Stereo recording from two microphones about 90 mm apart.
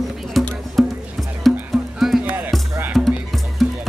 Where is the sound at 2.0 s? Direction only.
5° right (ahead or behind).